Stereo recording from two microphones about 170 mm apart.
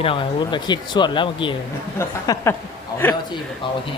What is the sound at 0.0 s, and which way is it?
Speech, 30° left (ahead or behind).